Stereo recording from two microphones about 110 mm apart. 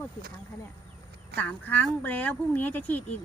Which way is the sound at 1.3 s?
15° left (ahead or behind).